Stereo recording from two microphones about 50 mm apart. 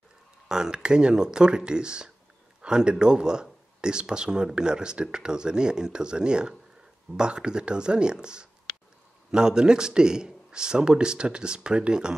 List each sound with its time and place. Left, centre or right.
0.5 s a man's voice: centre